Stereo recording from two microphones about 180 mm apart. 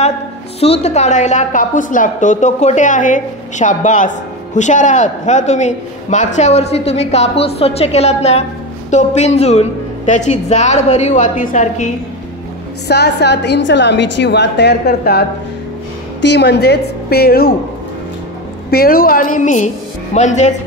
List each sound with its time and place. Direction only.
0.6 s a woman's voice: 35° left (ahead or behind)
12.8 s a woman's voice: 65° left (ahead or behind)
16.2 s a woman's voice: 70° left (ahead or behind)
18.7 s a woman's voice: 55° left (ahead or behind); by 20.5 s 40° left (ahead or behind)